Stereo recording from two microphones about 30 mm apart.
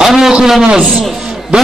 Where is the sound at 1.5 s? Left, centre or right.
Right.